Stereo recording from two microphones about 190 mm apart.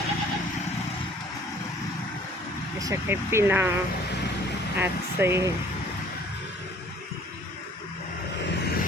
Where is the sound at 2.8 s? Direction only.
15° right (ahead or behind).